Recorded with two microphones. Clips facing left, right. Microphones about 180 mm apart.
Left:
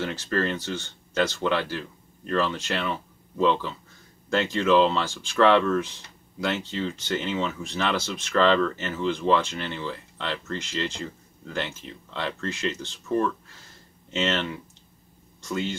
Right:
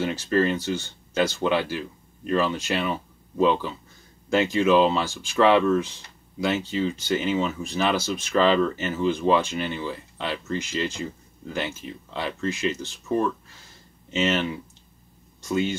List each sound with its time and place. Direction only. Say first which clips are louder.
0.0 s speech: right 4 dB; 10° right (ahead or behind)